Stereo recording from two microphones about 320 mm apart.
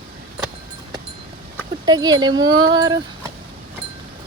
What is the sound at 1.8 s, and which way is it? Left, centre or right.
Speech, centre.